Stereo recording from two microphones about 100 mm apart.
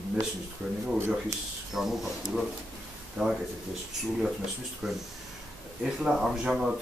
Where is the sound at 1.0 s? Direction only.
25° right (ahead or behind).